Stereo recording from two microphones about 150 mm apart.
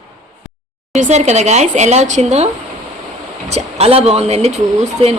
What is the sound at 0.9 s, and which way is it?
Speech, 50° right (ahead or behind).